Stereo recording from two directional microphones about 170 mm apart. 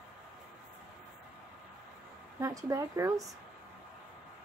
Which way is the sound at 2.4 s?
20° right (ahead or behind).